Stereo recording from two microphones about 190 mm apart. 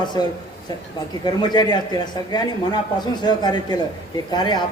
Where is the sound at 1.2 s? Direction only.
20° left (ahead or behind).